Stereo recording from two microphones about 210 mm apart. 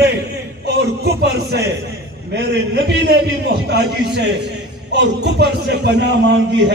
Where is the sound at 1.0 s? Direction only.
50° right (ahead or behind).